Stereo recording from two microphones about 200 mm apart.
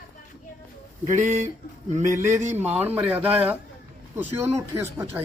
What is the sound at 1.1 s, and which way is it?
A man's voice, 40° right (ahead or behind).